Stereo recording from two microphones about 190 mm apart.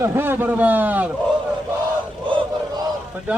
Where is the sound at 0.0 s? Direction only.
10° right (ahead or behind).